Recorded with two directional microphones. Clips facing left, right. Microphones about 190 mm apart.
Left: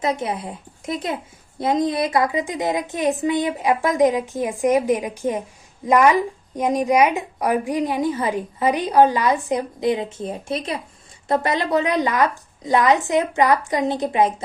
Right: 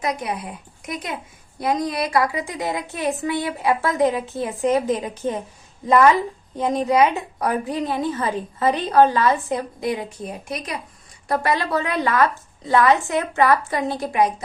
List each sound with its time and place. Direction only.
0.0 s a woman's voice: 25° left (ahead or behind)